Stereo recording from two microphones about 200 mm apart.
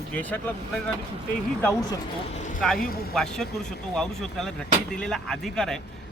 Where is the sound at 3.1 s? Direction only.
Centre (ahead or behind).